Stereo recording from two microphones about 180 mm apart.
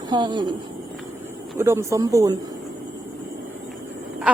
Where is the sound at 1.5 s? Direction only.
15° right (ahead or behind).